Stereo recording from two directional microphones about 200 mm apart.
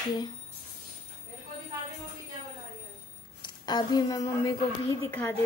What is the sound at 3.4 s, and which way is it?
Speech, 20° left (ahead or behind).